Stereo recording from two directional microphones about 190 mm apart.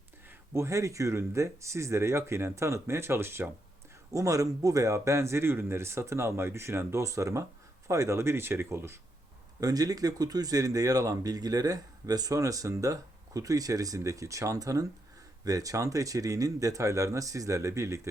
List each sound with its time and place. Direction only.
0.3 s speech: 15° right (ahead or behind)